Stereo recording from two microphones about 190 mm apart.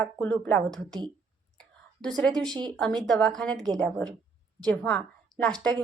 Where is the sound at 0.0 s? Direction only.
5° left (ahead or behind).